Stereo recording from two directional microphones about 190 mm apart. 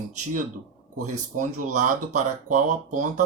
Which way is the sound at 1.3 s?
40° right (ahead or behind).